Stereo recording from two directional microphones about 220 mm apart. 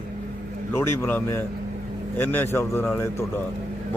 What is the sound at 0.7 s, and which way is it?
Speech, 10° left (ahead or behind).